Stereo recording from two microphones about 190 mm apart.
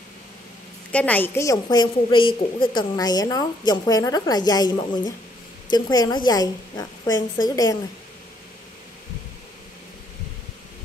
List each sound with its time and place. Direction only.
0.9 s a woman's voice: 10° left (ahead or behind)